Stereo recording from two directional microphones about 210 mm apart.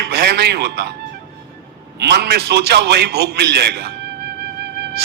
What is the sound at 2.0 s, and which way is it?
A man's voice, 50° right (ahead or behind).